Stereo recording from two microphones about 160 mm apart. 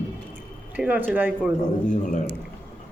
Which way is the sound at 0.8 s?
10° right (ahead or behind).